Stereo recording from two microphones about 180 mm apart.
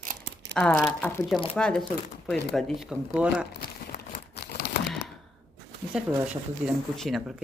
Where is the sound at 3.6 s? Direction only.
60° left (ahead or behind).